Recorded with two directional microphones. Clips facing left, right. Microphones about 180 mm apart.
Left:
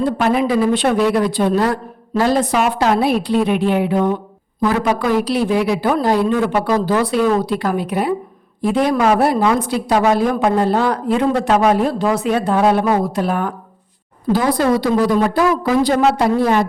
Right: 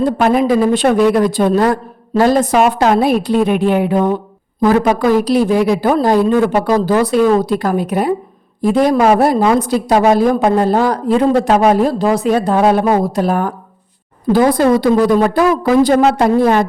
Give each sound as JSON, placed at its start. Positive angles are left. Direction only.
{"t": 0.0, "sound": "a woman's voice", "side_deg": -45}